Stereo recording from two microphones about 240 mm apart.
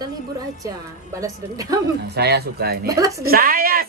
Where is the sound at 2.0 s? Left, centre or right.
Right.